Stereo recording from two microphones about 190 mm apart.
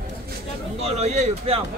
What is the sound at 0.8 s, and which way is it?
Speech, 35° right (ahead or behind).